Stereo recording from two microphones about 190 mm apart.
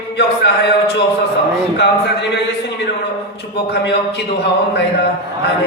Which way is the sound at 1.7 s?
60° left (ahead or behind).